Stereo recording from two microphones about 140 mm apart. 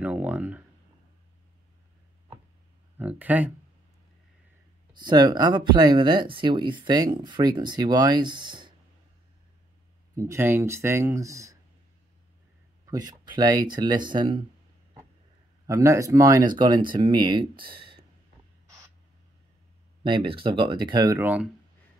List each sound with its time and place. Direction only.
0.0 s a sound: 10° right (ahead or behind)
3.0 s speech: 10° right (ahead or behind)
4.9 s speech: 30° right (ahead or behind)
10.1 s speech: 20° right (ahead or behind)
12.8 s speech: 25° right (ahead or behind)
15.6 s speech: 20° right (ahead or behind)
17.7 s a sound: 35° right (ahead or behind)
20.0 s speech: 35° right (ahead or behind)
21.2 s speech: 10° right (ahead or behind)